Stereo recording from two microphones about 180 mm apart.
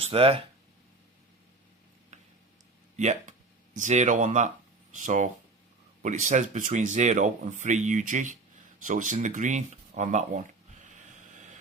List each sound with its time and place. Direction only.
0.0 s speech: 30° right (ahead or behind)
2.9 s speech: 40° right (ahead or behind)